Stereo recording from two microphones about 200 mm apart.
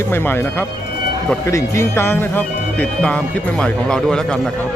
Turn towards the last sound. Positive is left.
turn(degrees=0)  # may be behind; listen again after turning